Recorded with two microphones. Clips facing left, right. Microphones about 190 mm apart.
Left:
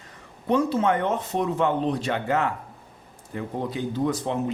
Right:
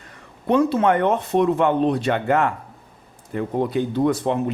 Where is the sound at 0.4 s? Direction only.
65° right (ahead or behind).